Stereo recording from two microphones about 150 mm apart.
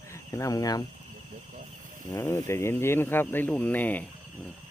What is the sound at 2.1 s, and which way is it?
Speech, 15° left (ahead or behind).